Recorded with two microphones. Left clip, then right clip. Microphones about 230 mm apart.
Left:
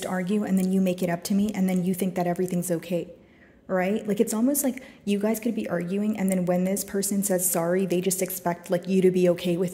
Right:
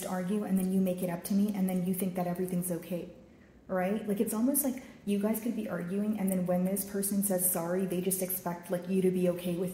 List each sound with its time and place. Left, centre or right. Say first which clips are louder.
0.0 s a woman's voice: left 7 dB; left